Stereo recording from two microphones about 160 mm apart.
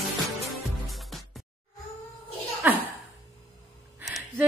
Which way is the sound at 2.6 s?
10° right (ahead or behind).